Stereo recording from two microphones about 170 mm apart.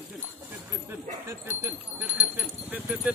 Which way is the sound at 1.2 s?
15° right (ahead or behind).